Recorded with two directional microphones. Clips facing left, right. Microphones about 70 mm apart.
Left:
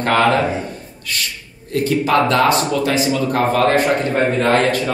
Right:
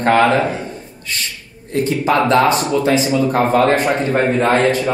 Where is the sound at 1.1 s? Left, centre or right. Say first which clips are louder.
Left 1 dB; right.